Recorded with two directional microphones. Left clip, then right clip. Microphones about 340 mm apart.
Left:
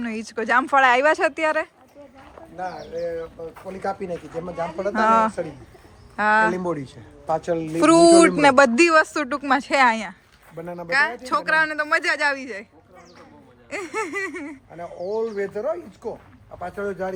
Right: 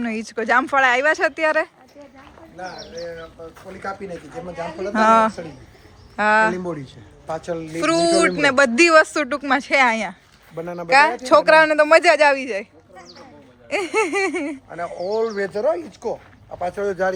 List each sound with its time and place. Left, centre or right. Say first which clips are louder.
0.0 s speech: right 3 dB; centre
2.6 s speech: left 3 dB; left
4.9 s speech: right 3 dB; centre
6.7 s speech: left 2 dB; centre
7.8 s speech: left 4 dB; centre
10.6 s speech: right 6 dB; centre
13.7 s speech: right 8 dB; centre
14.8 s speech: right 4 dB; right
15.3 s speech: right 5 dB; right